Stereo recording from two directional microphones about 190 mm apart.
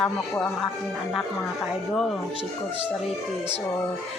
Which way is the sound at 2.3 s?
25° right (ahead or behind).